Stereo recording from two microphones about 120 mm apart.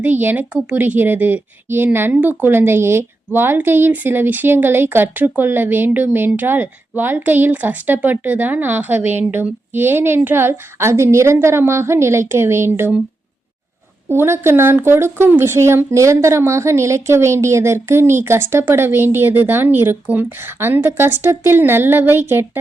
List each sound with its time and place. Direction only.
0.0 s a woman's voice: 15° right (ahead or behind)
14.1 s speech: 20° right (ahead or behind)